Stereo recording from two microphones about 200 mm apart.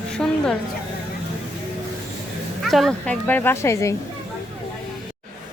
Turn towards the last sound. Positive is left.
turn(degrees=15)  # may be behind; listen again after turning